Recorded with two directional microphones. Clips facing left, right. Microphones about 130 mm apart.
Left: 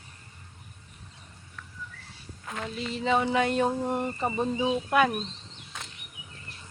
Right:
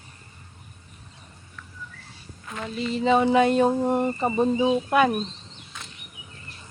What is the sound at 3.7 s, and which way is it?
Speech, 35° right (ahead or behind).